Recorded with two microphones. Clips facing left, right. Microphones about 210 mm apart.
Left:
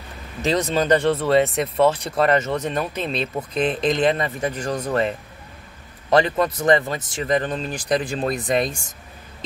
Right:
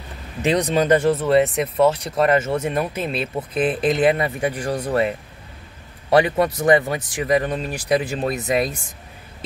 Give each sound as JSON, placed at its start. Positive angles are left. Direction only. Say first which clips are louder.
{"t": 0.4, "sound": "speech", "louder": "right 2 dB", "side_deg": -15}